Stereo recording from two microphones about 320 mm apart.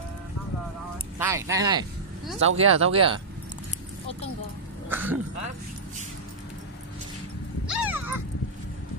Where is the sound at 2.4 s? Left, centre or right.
Right.